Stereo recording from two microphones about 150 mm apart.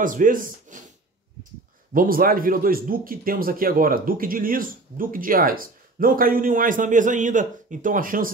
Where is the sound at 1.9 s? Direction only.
75° right (ahead or behind).